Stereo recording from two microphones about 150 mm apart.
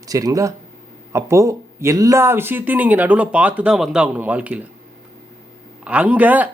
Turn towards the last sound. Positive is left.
turn(degrees=-10)  # may be behind; listen again after turning